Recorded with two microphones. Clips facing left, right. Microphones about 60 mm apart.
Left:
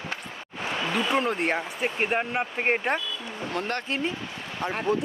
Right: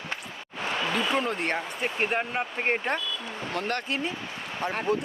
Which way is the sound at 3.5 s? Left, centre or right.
Left.